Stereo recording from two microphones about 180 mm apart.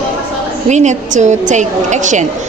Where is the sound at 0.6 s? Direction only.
40° right (ahead or behind).